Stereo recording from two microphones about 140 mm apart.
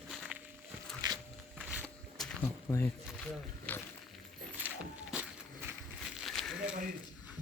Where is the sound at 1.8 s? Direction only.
5° left (ahead or behind).